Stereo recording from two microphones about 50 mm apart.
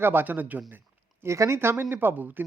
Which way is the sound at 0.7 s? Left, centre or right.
Right.